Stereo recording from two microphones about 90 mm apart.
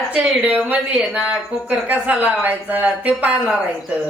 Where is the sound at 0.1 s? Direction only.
15° right (ahead or behind).